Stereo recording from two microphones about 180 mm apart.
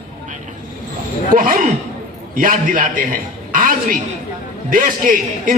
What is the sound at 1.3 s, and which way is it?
A man's voice, 50° right (ahead or behind).